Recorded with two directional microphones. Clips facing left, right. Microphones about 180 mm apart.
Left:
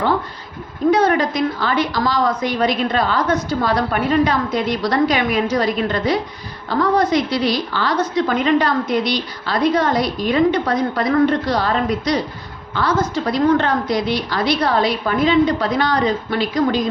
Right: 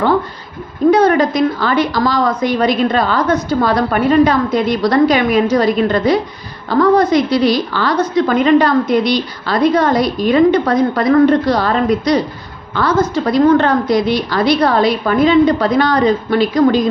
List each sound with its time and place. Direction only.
0.9 s a woman's voice: 40° right (ahead or behind)
13.3 s a woman's voice: 45° right (ahead or behind)